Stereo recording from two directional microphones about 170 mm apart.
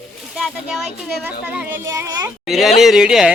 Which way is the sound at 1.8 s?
20° right (ahead or behind).